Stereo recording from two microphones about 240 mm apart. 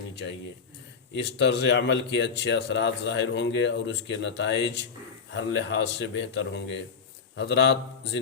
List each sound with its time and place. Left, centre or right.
1.1 s a man's voice: left